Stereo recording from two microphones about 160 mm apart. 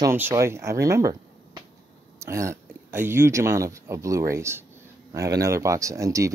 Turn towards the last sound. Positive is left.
turn(degrees=-20)  # may be behind; listen again after turning